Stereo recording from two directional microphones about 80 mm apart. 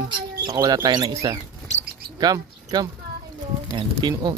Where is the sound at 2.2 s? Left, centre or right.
Right.